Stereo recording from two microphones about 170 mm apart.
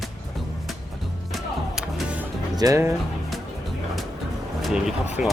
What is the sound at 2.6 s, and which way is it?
Speech, 20° right (ahead or behind).